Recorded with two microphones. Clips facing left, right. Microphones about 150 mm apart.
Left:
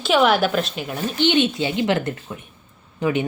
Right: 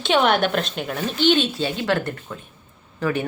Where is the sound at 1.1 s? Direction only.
15° left (ahead or behind).